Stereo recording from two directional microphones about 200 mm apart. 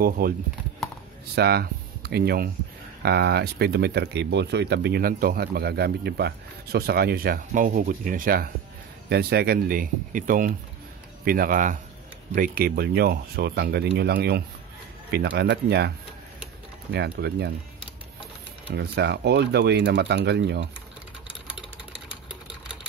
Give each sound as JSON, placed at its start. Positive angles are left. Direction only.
{"t": 0.2, "sound": "speech", "side_deg": -45}
{"t": 16.9, "sound": "speech", "side_deg": -55}
{"t": 18.7, "sound": "speech", "side_deg": -60}